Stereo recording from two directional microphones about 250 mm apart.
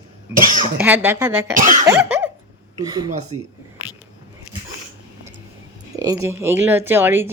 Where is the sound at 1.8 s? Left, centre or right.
Centre.